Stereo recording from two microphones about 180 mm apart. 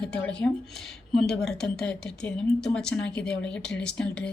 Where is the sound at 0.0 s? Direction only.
5° left (ahead or behind).